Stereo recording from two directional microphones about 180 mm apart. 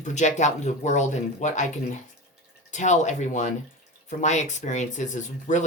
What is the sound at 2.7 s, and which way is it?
A woman's voice, 40° left (ahead or behind).